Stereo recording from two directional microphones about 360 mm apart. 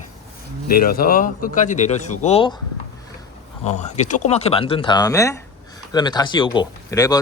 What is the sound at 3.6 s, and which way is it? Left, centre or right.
Speech, centre.